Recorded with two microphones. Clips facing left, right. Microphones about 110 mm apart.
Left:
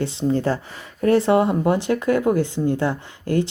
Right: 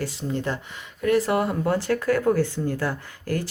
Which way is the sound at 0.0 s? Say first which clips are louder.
Left 7 dB; 25° left (ahead or behind).